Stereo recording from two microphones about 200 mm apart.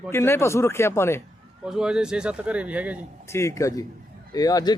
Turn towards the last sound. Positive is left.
turn(degrees=20)  # may be behind; listen again after turning